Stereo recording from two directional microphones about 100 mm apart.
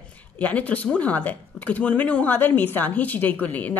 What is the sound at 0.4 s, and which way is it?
A woman's voice, 15° left (ahead or behind).